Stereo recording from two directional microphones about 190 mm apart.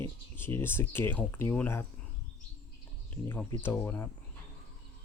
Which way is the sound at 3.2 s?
15° left (ahead or behind).